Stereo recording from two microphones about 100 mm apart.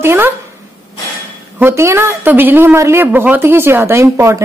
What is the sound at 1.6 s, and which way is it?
Speech, 25° right (ahead or behind).